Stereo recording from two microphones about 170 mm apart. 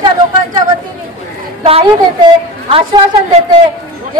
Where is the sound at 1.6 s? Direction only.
30° right (ahead or behind).